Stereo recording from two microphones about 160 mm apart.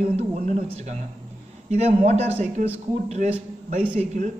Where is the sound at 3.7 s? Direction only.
50° right (ahead or behind).